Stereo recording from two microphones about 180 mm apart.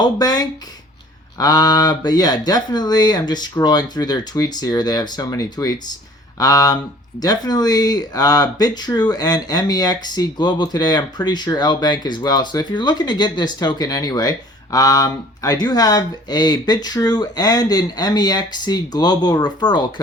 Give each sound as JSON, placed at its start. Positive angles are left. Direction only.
{"t": 0.0, "sound": "speech", "side_deg": 20}